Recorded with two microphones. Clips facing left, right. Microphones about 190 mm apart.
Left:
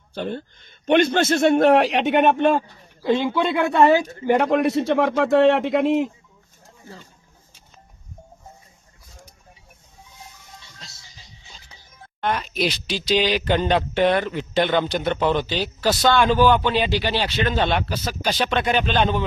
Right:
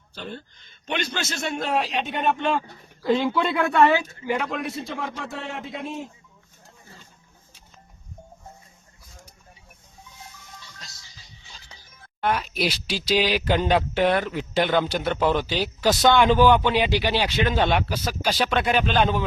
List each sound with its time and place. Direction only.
0.1 s a man's voice: 55° left (ahead or behind)
3.0 s a man's voice: centre (ahead or behind)
3.5 s speech: 25° left (ahead or behind)
3.8 s a woman's voice: 40° left (ahead or behind)
4.4 s speech: 60° left (ahead or behind); by 6.1 s 85° left
10.6 s music: 25° left (ahead or behind)
12.2 s speech: 5° right (ahead or behind)